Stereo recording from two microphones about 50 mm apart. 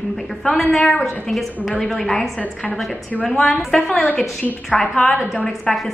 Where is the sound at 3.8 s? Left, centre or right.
Centre.